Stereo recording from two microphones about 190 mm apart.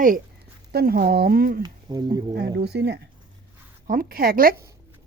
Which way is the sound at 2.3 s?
60° right (ahead or behind).